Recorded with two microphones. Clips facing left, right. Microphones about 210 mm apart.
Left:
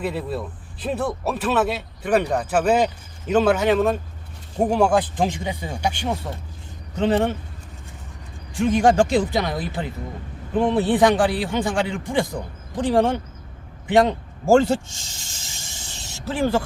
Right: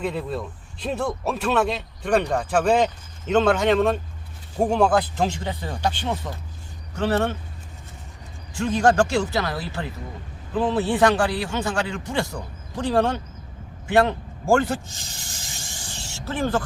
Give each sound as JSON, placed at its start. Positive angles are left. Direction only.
{"t": 0.0, "sound": "speech", "side_deg": 5}
{"t": 8.5, "sound": "a man's voice", "side_deg": 15}
{"t": 15.3, "sound": "snake", "side_deg": 25}